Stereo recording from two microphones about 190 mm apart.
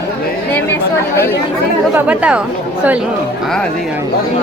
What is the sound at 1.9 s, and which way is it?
Speech, 10° right (ahead or behind).